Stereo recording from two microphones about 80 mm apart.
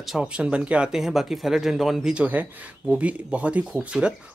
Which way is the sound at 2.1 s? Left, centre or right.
Centre.